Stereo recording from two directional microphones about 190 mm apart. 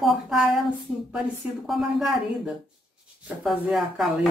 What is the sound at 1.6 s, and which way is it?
Speech, centre (ahead or behind).